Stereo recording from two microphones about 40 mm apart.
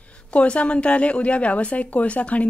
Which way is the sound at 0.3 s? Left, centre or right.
Left.